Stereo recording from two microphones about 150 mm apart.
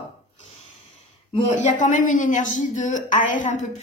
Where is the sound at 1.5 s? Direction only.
60° left (ahead or behind).